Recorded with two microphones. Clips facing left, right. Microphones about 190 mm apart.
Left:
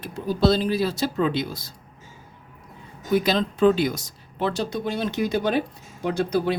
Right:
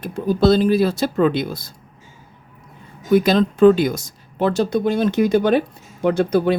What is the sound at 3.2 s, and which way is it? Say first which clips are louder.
Speech: right 7 dB; 50° right (ahead or behind).